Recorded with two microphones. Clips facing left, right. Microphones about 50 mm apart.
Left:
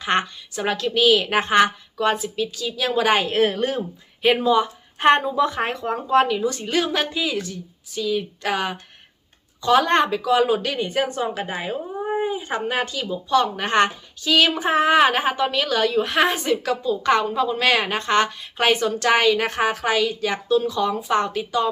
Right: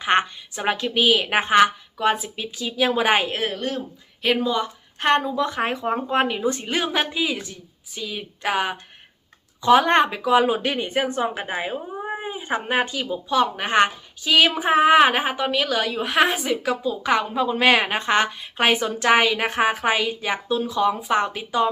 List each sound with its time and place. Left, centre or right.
0.0 s a woman's voice: centre
3.4 s speech: centre
5.6 s speech: centre